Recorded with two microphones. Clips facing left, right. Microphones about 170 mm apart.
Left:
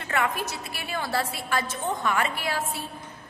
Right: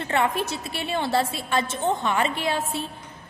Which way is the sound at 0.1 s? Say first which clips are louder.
Right 3 dB; 25° right (ahead or behind).